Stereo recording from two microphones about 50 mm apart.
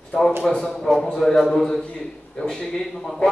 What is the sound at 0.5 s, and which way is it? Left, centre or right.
A man's voice, centre.